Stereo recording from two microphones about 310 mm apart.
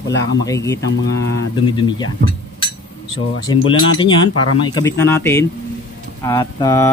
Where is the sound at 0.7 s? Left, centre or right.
Left.